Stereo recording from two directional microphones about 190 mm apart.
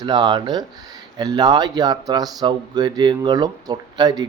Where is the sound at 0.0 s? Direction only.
25° right (ahead or behind).